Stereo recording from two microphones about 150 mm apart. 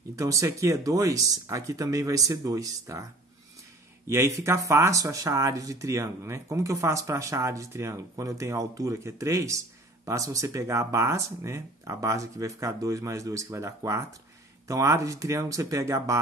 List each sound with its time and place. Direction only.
0.1 s speech: 20° right (ahead or behind)
4.1 s speech: 20° right (ahead or behind)